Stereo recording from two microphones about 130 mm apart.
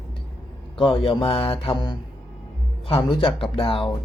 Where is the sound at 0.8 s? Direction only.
40° left (ahead or behind).